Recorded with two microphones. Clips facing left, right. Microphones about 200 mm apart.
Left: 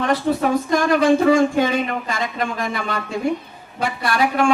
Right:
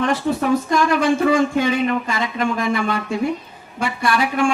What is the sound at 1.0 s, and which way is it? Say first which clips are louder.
Speech: left 2 dB; 45° left (ahead or behind).